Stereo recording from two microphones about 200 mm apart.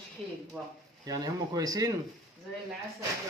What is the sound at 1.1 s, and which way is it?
Speech, 20° right (ahead or behind).